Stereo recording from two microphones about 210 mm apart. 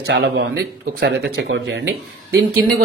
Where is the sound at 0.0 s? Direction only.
50° right (ahead or behind).